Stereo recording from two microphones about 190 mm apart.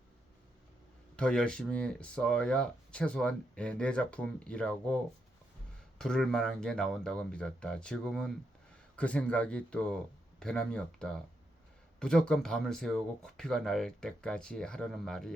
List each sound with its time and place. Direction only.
1.1 s speech: 5° left (ahead or behind)
6.0 s speech: 5° left (ahead or behind)